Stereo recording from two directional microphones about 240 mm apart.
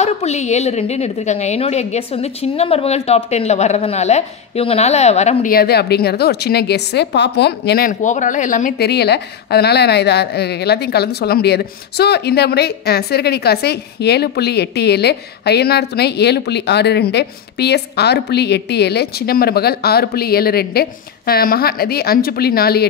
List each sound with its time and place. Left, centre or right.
0.0 s a woman's voice: left